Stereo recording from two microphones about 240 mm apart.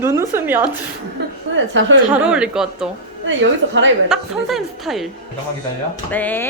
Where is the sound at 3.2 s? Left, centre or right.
Right.